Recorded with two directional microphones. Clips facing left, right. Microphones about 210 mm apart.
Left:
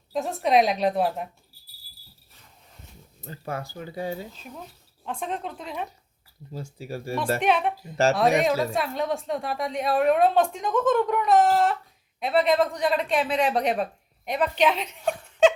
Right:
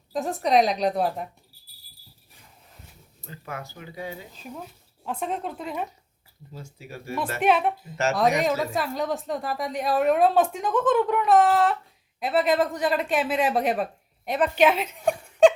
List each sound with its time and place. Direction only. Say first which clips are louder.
0.1 s a woman's voice: even; centre (ahead or behind)
3.2 s speech: left 4 dB; 35° left (ahead or behind)
5.0 s a woman's voice: right 2 dB; 5° right (ahead or behind)
6.5 s speech: left 6 dB; 35° left (ahead or behind)
7.4 s a woman's voice: right 6 dB; 5° right (ahead or behind)